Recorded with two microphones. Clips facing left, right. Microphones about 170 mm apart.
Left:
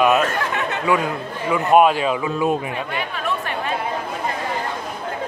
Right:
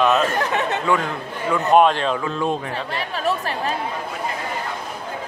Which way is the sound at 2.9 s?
35° right (ahead or behind).